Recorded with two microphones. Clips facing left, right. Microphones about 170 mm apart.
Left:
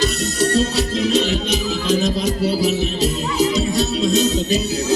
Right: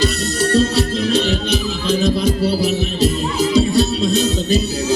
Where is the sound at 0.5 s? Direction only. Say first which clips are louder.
Right 3 dB; 30° right (ahead or behind).